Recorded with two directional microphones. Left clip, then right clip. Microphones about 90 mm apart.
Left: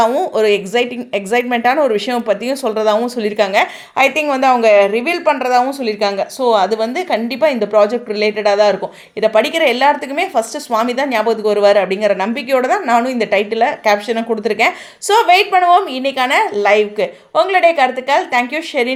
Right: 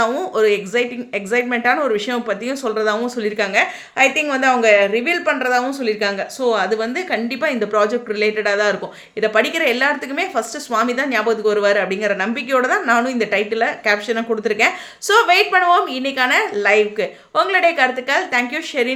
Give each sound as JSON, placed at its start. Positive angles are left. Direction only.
{"t": 0.0, "sound": "a woman's voice", "side_deg": 35}
{"t": 15.0, "sound": "a woman's voice", "side_deg": 25}
{"t": 17.3, "sound": "a woman's voice", "side_deg": 20}